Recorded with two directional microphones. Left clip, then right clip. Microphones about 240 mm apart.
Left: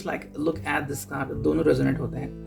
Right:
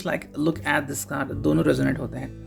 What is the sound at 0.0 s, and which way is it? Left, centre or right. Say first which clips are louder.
Speech: right 2 dB; right.